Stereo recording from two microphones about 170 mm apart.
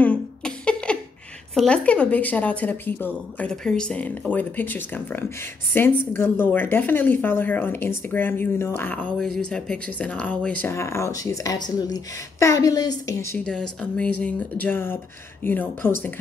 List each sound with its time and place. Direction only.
0.0 s a sound: 5° left (ahead or behind)
1.5 s speech: 5° left (ahead or behind)
13.5 s speech: 5° left (ahead or behind)